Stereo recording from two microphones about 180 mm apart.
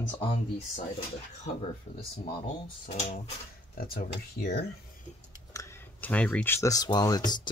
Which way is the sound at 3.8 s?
55° left (ahead or behind).